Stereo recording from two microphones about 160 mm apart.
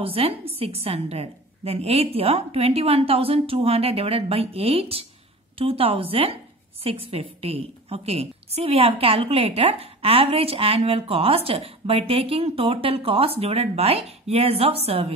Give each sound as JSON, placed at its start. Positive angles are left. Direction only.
{"t": 0.0, "sound": "a woman's voice", "side_deg": -35}